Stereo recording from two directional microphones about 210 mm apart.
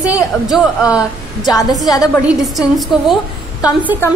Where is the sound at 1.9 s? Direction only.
15° left (ahead or behind).